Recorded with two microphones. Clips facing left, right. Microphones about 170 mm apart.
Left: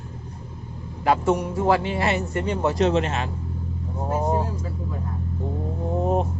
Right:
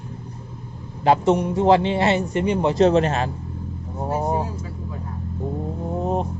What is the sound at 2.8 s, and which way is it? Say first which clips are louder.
Speech: right 6 dB; 40° right (ahead or behind).